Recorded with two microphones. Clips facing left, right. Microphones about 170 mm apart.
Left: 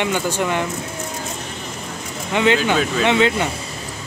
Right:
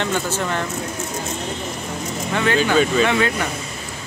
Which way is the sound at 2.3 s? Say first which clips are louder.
Left 1 dB; 15° left (ahead or behind).